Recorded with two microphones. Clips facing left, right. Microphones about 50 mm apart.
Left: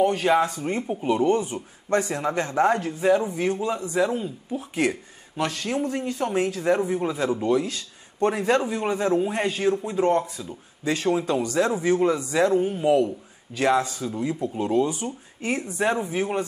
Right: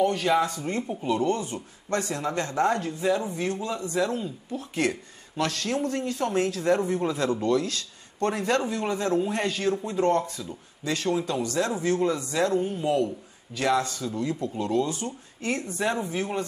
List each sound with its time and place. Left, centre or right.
0.0 s speech: left